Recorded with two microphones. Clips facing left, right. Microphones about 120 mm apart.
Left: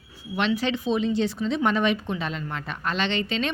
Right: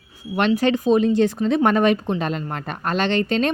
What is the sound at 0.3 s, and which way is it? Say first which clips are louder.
Speech: right 6 dB; 50° right (ahead or behind).